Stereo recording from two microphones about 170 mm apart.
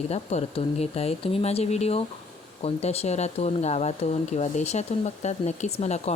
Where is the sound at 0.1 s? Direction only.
40° left (ahead or behind).